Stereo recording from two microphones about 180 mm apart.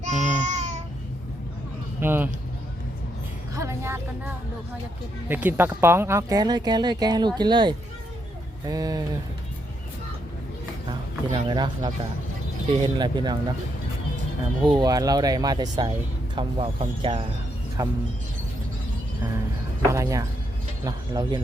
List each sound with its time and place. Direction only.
0.0 s child singing: 40° right (ahead or behind)
2.0 s speech: 10° right (ahead or behind)
3.5 s music: 15° right (ahead or behind)
5.3 s speech: 10° right (ahead or behind)
11.3 s speech: 25° right (ahead or behind)
14.6 s speech: 25° right (ahead or behind)
19.9 s speech: 15° right (ahead or behind)